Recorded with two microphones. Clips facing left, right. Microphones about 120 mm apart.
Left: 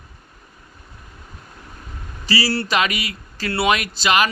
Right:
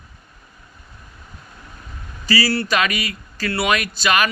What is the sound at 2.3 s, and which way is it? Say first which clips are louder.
Speech: right 1 dB; 30° left (ahead or behind).